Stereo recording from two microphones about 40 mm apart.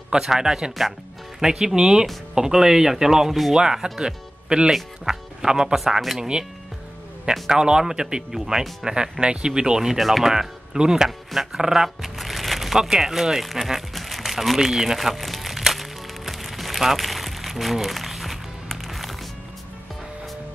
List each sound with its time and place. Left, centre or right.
0.1 s speech: centre
5.8 s speech: centre
6.1 s speech: right
7.4 s speech: centre
9.9 s speech: centre
10.3 s speech: centre
11.1 s speech: centre
15.0 s music: centre